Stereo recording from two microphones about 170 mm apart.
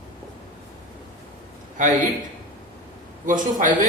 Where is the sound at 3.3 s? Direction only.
50° right (ahead or behind).